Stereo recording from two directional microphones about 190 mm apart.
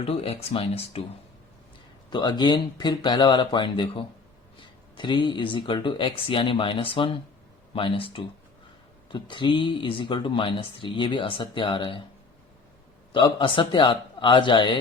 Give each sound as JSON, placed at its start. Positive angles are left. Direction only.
{"t": 0.0, "sound": "speech", "side_deg": 30}
{"t": 2.0, "sound": "speech", "side_deg": 25}
{"t": 13.1, "sound": "speech", "side_deg": 25}